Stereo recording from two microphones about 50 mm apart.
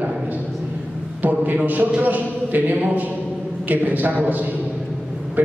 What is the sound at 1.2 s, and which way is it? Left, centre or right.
A man's voice, right.